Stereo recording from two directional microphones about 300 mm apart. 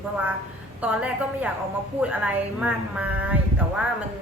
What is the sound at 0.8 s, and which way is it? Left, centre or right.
Speech, centre.